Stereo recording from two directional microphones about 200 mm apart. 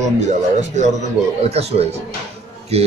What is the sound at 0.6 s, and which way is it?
Speech, 35° right (ahead or behind).